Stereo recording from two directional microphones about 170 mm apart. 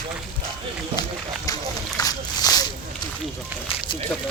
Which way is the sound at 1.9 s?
20° left (ahead or behind).